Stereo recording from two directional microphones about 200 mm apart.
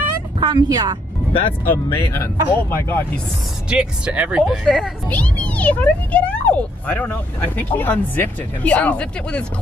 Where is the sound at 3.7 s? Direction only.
5° right (ahead or behind).